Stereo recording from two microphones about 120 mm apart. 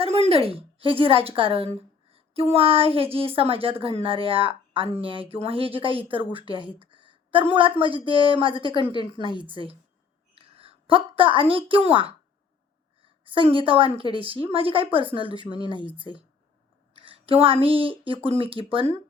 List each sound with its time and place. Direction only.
0.3 s a woman's voice: 55° right (ahead or behind)
16.9 s speech: 50° right (ahead or behind)